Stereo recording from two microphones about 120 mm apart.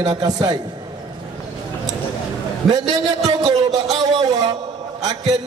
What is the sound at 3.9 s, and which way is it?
Speech, 30° right (ahead or behind).